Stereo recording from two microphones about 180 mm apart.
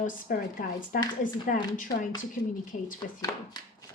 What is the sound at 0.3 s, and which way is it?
Speech, 50° left (ahead or behind).